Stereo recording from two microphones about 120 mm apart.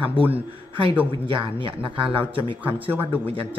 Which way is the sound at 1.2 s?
45° right (ahead or behind).